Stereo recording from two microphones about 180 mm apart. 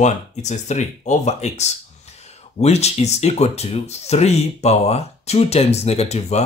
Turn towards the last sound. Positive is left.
turn(degrees=35)  # may be behind; listen again after turning